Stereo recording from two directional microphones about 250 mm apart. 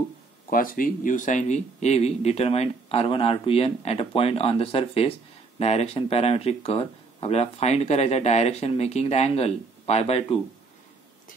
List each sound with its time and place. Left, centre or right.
0.5 s speech: left